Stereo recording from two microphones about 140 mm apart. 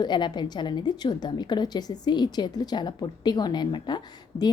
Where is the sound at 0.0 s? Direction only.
30° left (ahead or behind).